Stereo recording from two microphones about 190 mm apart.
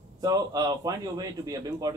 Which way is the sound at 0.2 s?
20° right (ahead or behind).